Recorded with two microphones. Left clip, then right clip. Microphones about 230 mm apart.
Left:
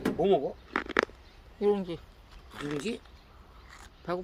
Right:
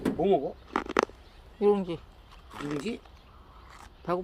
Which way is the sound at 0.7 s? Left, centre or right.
Centre.